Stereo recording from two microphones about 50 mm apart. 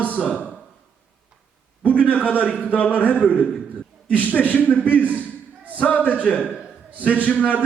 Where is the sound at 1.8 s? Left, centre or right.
Left.